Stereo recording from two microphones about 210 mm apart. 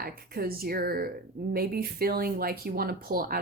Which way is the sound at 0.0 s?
45° right (ahead or behind).